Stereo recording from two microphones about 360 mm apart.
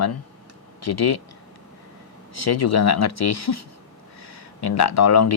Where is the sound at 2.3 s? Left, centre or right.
Left.